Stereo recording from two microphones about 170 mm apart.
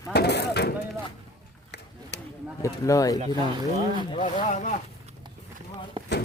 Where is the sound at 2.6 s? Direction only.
20° left (ahead or behind).